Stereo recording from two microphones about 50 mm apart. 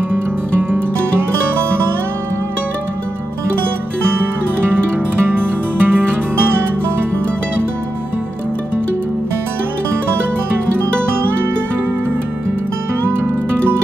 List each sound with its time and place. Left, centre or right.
0.6 s music: right
5.2 s music: right